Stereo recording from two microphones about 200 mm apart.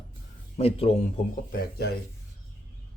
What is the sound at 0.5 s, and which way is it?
Speech, 30° left (ahead or behind).